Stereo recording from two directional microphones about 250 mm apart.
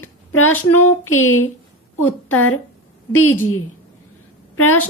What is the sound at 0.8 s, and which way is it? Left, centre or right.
Speech, left.